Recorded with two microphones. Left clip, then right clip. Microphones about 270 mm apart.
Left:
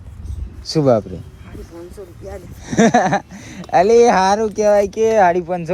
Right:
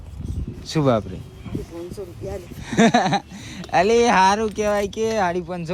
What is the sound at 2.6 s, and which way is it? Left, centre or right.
Speech, centre.